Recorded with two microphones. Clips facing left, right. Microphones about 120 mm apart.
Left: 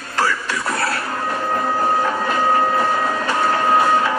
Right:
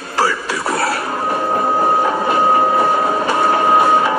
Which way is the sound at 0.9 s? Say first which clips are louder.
Right 4 dB; 25° right (ahead or behind).